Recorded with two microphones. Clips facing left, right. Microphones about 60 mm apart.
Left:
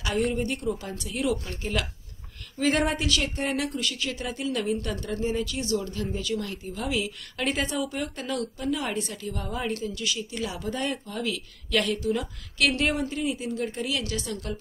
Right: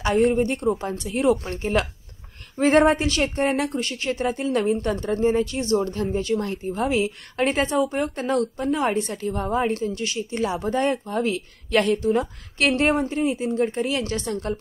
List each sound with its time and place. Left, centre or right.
0.0 s a woman's voice: right